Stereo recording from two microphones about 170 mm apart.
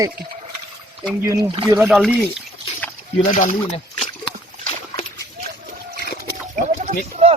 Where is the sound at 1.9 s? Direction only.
5° left (ahead or behind).